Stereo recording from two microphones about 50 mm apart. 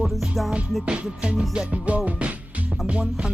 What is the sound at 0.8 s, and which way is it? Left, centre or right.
Music, right.